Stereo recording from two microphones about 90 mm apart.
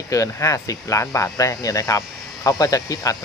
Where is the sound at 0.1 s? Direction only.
35° left (ahead or behind).